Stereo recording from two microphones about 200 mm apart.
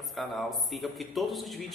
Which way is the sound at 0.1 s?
Centre (ahead or behind).